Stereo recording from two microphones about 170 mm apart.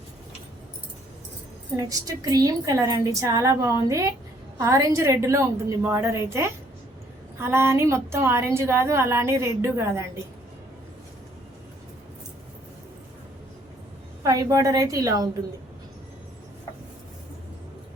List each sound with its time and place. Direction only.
1.7 s a woman's voice: 20° right (ahead or behind)
14.3 s a woman's voice: 20° right (ahead or behind)